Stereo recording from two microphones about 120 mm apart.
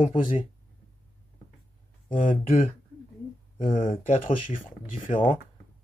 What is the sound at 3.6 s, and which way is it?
Speech, 50° left (ahead or behind).